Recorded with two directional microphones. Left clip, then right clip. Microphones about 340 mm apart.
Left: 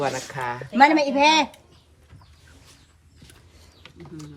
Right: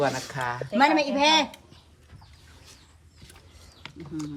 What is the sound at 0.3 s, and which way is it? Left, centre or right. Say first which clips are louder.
Speech: left 1 dB; centre.